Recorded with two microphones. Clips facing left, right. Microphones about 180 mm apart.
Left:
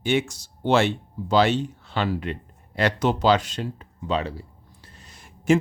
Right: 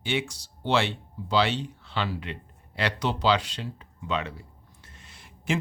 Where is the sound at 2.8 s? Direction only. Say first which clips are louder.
Left 6 dB; 45° left (ahead or behind).